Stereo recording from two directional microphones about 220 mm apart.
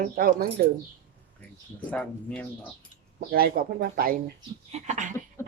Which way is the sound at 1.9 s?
5° left (ahead or behind).